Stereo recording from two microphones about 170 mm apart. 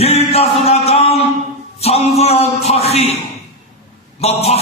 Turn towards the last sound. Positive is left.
turn(degrees=40)  # may be behind; listen again after turning